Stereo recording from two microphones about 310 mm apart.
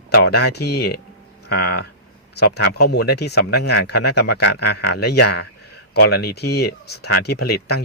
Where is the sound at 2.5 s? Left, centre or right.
Left.